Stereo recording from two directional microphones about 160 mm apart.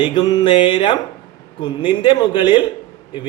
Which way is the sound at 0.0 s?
30° left (ahead or behind).